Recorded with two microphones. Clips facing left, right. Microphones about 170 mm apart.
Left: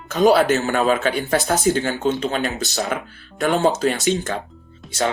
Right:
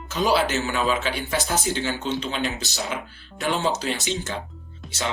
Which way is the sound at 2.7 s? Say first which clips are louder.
Left 6 dB; 60° left (ahead or behind).